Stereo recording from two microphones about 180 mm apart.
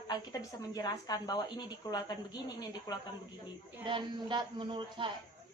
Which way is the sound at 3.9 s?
25° right (ahead or behind).